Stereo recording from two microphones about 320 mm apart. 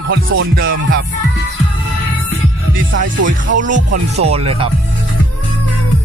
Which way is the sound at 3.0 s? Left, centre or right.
Right.